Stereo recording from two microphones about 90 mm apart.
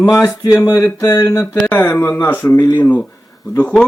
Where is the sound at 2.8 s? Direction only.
15° left (ahead or behind).